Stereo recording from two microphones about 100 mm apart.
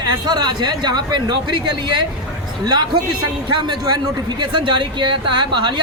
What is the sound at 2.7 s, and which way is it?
Speech, 45° right (ahead or behind).